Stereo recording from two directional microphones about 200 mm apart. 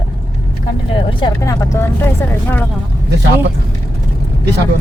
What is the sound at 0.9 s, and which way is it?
Speech, 25° left (ahead or behind).